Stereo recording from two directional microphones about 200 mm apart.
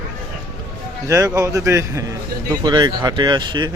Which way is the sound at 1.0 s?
15° right (ahead or behind).